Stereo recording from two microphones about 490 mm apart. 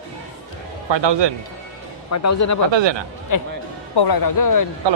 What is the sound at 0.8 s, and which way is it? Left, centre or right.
Speech, right.